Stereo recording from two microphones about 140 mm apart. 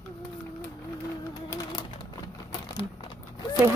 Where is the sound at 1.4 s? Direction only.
25° left (ahead or behind).